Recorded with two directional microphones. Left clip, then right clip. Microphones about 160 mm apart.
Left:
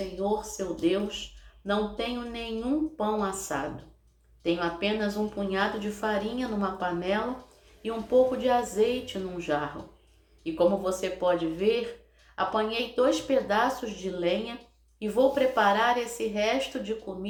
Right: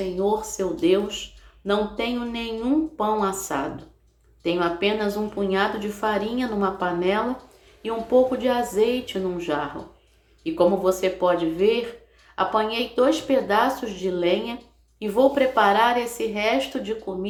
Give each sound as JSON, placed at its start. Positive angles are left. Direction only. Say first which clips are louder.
{"t": 0.5, "sound": "a woman's voice", "louder": "right 7 dB", "side_deg": -25}